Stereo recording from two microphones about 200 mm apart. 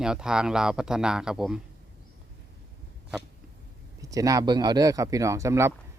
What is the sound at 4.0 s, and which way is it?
Speech, 15° right (ahead or behind).